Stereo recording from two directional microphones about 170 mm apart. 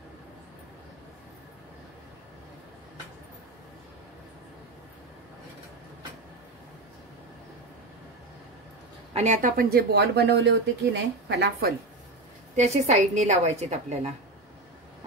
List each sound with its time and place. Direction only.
9.1 s speech: 45° right (ahead or behind); by 11.7 s 70° right (ahead or behind)
12.5 s a woman's voice: 40° right (ahead or behind)